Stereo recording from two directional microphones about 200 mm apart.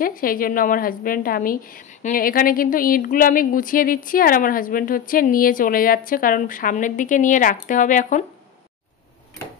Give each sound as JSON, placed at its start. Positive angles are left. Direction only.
{"t": 0.0, "sound": "speech", "side_deg": 45}